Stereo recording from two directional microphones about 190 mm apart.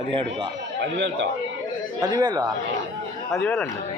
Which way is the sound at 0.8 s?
70° right (ahead or behind).